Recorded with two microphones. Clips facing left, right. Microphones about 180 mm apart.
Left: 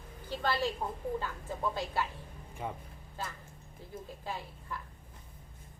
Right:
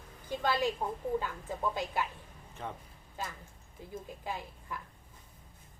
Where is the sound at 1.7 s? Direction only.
15° right (ahead or behind).